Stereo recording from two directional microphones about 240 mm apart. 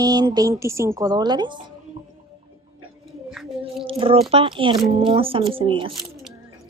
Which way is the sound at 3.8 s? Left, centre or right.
Right.